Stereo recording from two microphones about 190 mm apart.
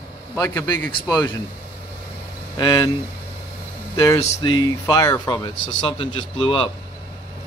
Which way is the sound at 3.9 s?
20° left (ahead or behind).